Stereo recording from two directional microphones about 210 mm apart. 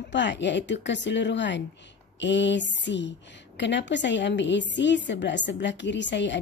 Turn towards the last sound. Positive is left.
turn(degrees=55)  # may be behind; listen again after turning